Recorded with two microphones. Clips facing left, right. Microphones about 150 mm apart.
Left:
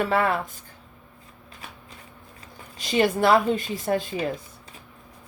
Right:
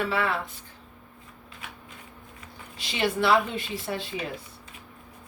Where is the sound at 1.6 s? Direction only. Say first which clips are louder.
Left 1 dB; 35° left (ahead or behind).